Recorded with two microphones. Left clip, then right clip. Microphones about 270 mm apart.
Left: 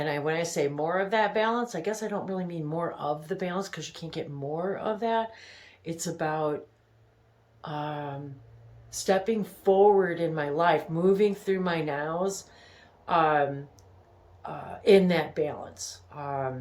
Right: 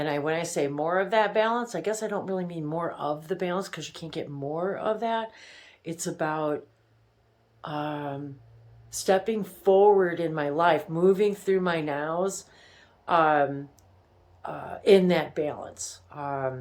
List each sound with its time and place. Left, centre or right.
0.0 s speech: centre
7.6 s speech: centre